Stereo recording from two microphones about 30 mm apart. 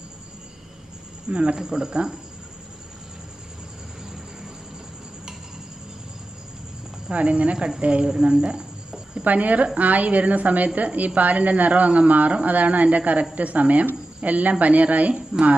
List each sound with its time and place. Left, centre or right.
1.3 s speech: right
1.6 s speech: right
7.1 s speech: right
8.0 s speech: right
9.2 s speech: right